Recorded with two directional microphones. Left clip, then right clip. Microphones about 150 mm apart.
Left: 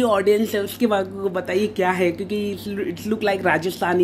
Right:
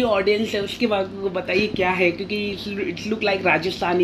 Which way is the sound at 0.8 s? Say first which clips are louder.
Left 1 dB; 20° left (ahead or behind).